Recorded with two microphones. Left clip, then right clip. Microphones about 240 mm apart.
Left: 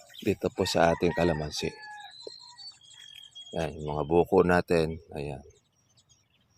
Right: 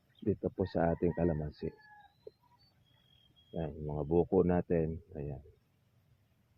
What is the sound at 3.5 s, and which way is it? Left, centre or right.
Speech, left.